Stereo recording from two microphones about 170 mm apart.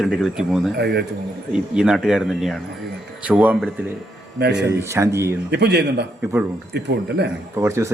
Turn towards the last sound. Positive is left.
turn(degrees=-15)  # may be behind; listen again after turning